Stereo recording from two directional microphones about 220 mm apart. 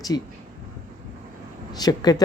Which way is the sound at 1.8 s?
20° left (ahead or behind).